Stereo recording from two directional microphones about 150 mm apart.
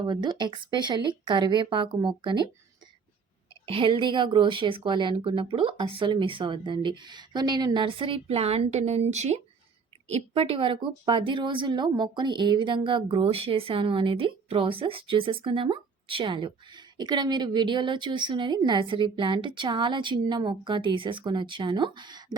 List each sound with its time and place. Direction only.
0.0 s speech: 30° right (ahead or behind)
3.7 s speech: 35° right (ahead or behind)